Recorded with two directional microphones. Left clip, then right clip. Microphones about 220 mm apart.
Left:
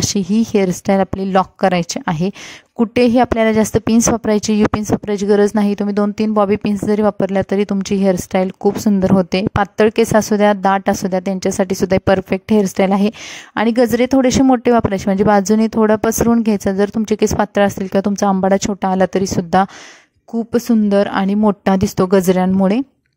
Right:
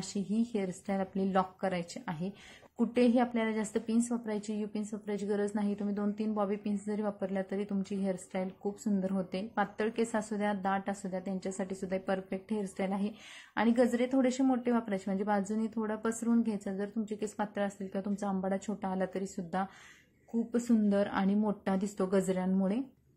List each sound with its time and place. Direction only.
0.1 s a woman's voice: 45° left (ahead or behind)